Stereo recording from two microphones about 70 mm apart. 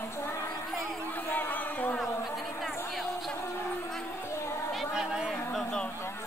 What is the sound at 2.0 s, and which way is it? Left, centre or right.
Chatter, centre.